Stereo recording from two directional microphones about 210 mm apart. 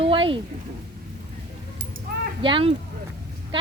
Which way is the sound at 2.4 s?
25° right (ahead or behind).